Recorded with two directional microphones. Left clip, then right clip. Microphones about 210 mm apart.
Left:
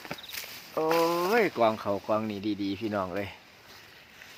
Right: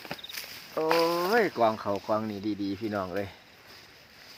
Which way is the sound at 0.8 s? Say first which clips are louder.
Even; 5° right (ahead or behind).